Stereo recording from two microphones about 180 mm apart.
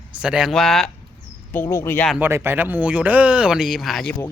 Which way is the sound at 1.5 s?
15° left (ahead or behind).